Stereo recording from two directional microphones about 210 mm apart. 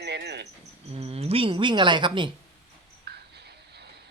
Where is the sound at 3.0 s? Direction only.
50° right (ahead or behind).